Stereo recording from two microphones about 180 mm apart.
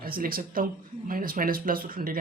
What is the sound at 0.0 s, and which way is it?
Speech, 55° right (ahead or behind).